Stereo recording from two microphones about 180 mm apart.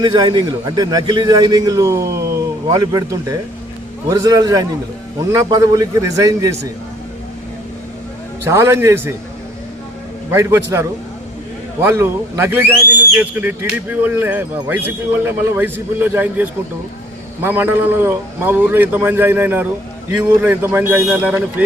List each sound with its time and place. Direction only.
0.0 s a man's voice: 25° right (ahead or behind)
8.4 s speech: 15° right (ahead or behind)
10.3 s speech: 15° right (ahead or behind)